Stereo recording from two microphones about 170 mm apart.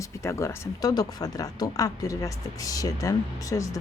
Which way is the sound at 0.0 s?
15° left (ahead or behind).